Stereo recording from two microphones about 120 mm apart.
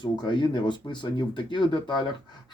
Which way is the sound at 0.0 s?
40° left (ahead or behind).